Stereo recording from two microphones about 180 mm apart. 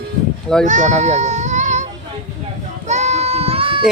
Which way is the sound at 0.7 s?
40° right (ahead or behind).